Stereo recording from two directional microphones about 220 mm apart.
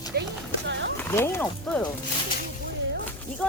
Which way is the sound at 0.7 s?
55° right (ahead or behind).